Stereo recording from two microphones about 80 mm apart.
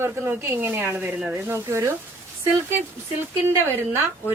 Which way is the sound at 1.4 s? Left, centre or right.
Right.